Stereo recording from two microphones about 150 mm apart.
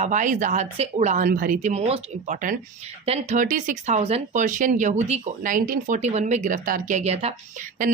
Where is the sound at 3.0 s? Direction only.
45° right (ahead or behind).